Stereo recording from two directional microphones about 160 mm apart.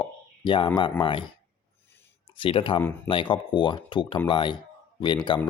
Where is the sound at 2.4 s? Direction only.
35° left (ahead or behind).